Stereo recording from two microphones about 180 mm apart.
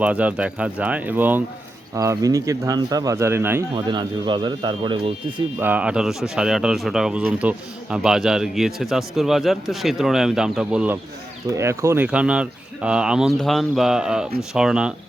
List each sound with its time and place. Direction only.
0.0 s speech: 5° right (ahead or behind)
3.8 s speech: 25° right (ahead or behind)
5.5 s speech: 10° right (ahead or behind)